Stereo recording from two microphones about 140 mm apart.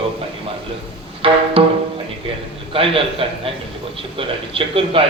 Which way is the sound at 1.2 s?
40° right (ahead or behind).